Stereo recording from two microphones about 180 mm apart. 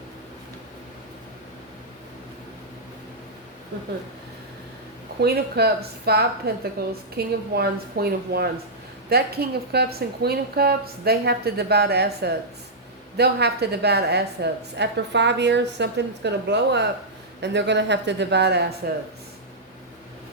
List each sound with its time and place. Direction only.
5.2 s a woman's voice: 65° right (ahead or behind)